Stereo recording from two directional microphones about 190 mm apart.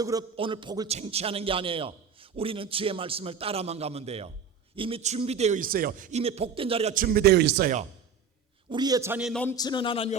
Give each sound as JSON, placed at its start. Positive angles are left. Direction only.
{"t": 0.0, "sound": "a man's voice", "side_deg": -20}
{"t": 6.9, "sound": "speech", "side_deg": -50}
{"t": 8.7, "sound": "a man's voice", "side_deg": -20}
{"t": 9.2, "sound": "a man's voice", "side_deg": 5}
{"t": 9.6, "sound": "a man's voice", "side_deg": 25}